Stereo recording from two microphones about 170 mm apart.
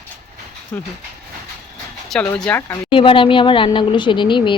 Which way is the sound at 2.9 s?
30° left (ahead or behind).